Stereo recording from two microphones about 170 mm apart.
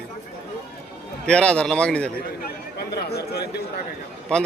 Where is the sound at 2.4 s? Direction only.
70° left (ahead or behind).